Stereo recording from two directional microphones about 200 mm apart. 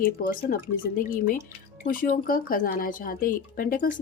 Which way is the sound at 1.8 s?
45° left (ahead or behind).